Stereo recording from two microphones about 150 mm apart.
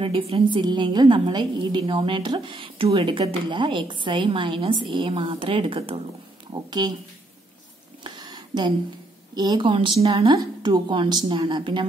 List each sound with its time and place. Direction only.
0.0 s a woman's voice: 35° right (ahead or behind)
8.0 s a sound: 30° right (ahead or behind)
9.3 s a woman's voice: 30° right (ahead or behind)